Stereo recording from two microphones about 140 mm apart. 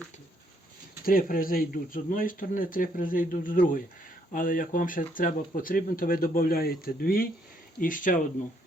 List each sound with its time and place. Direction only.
1.0 s speech: 90° left
7.8 s speech: 75° left (ahead or behind)